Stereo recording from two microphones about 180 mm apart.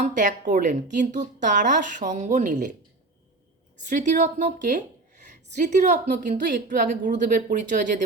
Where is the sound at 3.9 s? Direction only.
45° right (ahead or behind).